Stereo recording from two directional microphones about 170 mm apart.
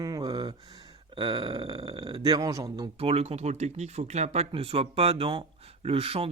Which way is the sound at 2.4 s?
20° right (ahead or behind).